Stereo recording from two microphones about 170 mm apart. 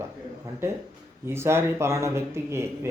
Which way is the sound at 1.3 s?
15° right (ahead or behind).